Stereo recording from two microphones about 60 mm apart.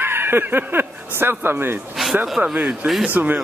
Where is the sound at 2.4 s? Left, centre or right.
Right.